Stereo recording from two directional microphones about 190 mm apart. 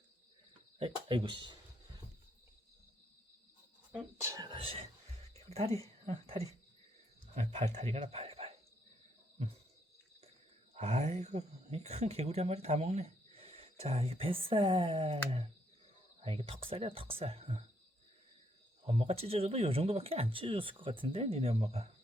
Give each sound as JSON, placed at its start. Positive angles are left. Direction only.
{"t": 0.8, "sound": "speech", "side_deg": -25}
{"t": 3.9, "sound": "speech", "side_deg": -15}
{"t": 5.3, "sound": "a sound", "side_deg": -35}
{"t": 5.7, "sound": "speech", "side_deg": -30}
{"t": 10.8, "sound": "speech", "side_deg": -35}
{"t": 18.9, "sound": "speech", "side_deg": -30}